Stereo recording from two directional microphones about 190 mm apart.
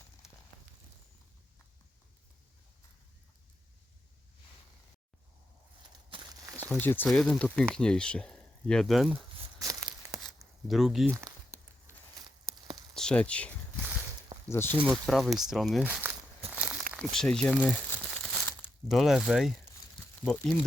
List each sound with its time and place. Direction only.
6.1 s walk: 25° right (ahead or behind)
6.7 s speech: 10° left (ahead or behind)
10.7 s speech: centre (ahead or behind)
11.1 s a sound: 15° right (ahead or behind)
12.9 s speech: 5° left (ahead or behind)
14.5 s speech: 10° left (ahead or behind)
14.8 s speech: centre (ahead or behind)
16.6 s a sound: 5° right (ahead or behind)
16.9 s speech: centre (ahead or behind)